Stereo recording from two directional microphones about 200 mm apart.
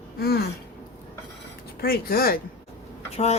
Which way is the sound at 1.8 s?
50° left (ahead or behind).